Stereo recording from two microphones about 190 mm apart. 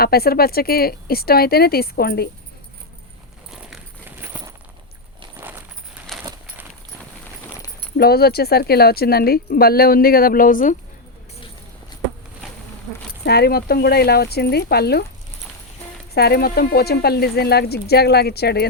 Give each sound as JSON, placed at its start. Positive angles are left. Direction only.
{"t": 0.0, "sound": "speech", "side_deg": 55}
{"t": 5.4, "sound": "a sound", "side_deg": -10}
{"t": 6.1, "sound": "a sound", "side_deg": 0}
{"t": 7.9, "sound": "speech", "side_deg": 55}
{"t": 13.2, "sound": "speech", "side_deg": 55}
{"t": 16.1, "sound": "speech", "side_deg": 55}